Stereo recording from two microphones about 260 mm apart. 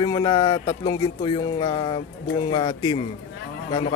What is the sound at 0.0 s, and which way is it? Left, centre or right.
Speech, centre.